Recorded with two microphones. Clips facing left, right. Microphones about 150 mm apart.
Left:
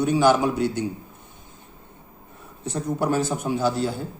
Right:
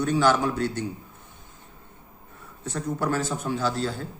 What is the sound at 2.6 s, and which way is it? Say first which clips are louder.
A man's voice: left 3 dB; 15° left (ahead or behind).